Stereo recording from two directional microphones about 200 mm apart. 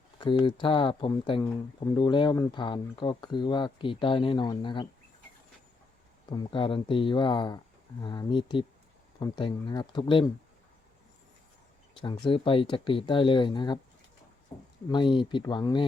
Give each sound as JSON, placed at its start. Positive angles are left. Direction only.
{"t": 0.2, "sound": "speech", "side_deg": 25}
{"t": 6.3, "sound": "speech", "side_deg": 25}
{"t": 11.9, "sound": "speech", "side_deg": 25}
{"t": 14.8, "sound": "speech", "side_deg": 25}